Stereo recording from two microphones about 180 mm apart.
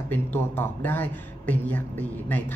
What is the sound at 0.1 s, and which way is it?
Speech, 10° left (ahead or behind).